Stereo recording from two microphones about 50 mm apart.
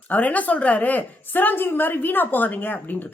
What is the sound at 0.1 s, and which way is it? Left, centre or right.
A woman's voice, left.